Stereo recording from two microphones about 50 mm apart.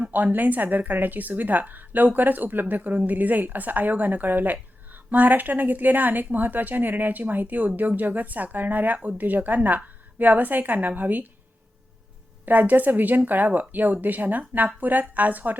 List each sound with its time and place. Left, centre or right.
0.0 s a woman's voice: right
12.5 s a woman's voice: right